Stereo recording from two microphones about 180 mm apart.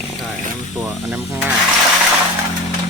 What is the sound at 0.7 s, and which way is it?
Speech, 10° right (ahead or behind).